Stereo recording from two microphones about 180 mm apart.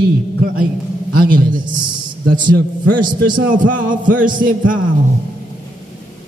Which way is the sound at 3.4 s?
50° right (ahead or behind).